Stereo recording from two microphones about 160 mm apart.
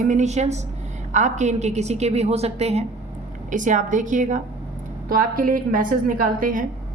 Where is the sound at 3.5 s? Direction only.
55° right (ahead or behind).